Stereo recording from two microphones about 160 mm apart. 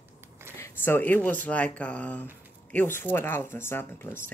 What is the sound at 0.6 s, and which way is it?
Speech, 15° left (ahead or behind).